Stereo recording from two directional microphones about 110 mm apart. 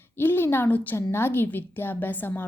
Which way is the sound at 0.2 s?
20° left (ahead or behind).